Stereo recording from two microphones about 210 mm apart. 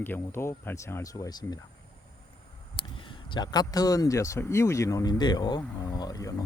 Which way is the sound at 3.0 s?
20° left (ahead or behind).